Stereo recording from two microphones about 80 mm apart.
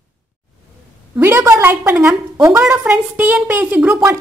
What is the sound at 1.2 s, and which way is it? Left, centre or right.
A woman's voice, right.